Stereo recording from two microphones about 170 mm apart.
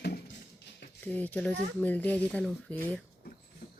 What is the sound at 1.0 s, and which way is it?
Speech, 10° left (ahead or behind).